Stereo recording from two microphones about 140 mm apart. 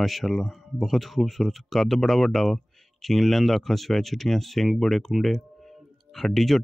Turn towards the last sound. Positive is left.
turn(degrees=0)  # may be behind; listen again after turning